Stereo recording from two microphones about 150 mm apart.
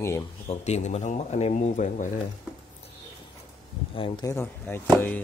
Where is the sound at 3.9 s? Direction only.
35° left (ahead or behind).